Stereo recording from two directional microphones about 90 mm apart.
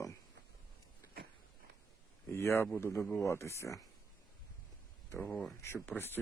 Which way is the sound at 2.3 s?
30° left (ahead or behind).